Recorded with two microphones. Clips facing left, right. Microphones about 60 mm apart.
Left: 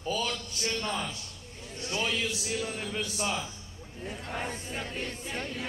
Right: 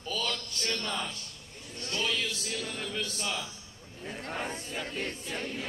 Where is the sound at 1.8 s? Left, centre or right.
Centre.